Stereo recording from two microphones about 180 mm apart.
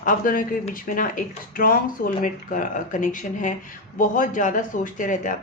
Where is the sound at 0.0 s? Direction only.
50° left (ahead or behind).